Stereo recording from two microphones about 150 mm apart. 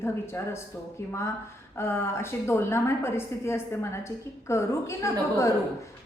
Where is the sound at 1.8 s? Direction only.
15° left (ahead or behind).